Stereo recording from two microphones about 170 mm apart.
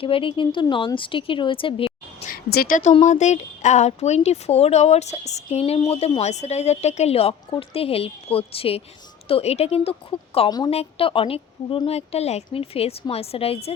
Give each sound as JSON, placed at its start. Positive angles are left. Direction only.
{"t": 0.0, "sound": "speech", "side_deg": 30}
{"t": 2.3, "sound": "a woman's voice", "side_deg": 65}